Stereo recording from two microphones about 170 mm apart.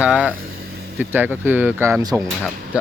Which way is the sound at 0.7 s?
70° right (ahead or behind).